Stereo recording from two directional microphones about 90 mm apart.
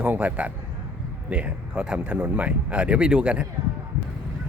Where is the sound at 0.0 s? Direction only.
15° right (ahead or behind).